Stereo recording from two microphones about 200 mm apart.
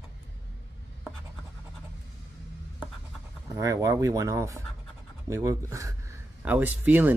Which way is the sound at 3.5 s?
15° right (ahead or behind).